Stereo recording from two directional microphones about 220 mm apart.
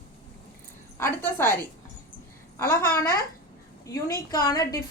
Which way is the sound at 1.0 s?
10° left (ahead or behind).